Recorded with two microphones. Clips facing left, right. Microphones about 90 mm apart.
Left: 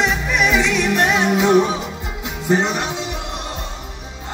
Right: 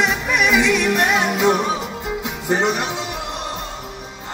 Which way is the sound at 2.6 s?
5° right (ahead or behind).